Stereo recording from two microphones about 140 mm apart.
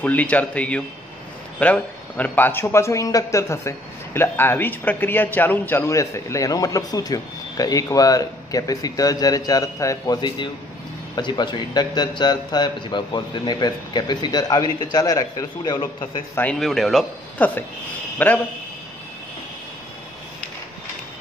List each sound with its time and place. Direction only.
0.0 s a man's voice: 10° left (ahead or behind); by 16.2 s 30° left (ahead or behind)
16.5 s speech: centre (ahead or behind)
17.4 s a man's voice: 10° left (ahead or behind)